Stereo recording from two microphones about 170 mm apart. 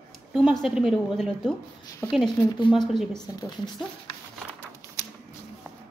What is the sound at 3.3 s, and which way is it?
Speech, 25° left (ahead or behind).